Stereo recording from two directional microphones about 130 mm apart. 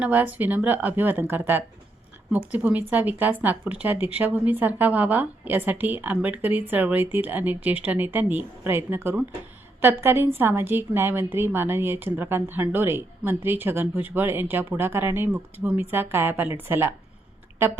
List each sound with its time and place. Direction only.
0.0 s speech: 10° right (ahead or behind)